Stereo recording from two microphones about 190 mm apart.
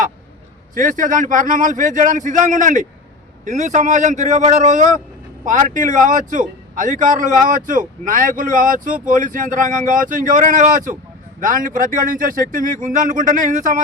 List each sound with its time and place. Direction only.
0.7 s a man's voice: 45° right (ahead or behind)